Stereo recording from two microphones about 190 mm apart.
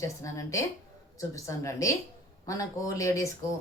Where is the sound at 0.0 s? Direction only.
15° left (ahead or behind).